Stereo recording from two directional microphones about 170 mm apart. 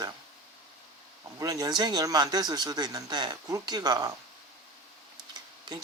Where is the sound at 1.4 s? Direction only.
20° right (ahead or behind).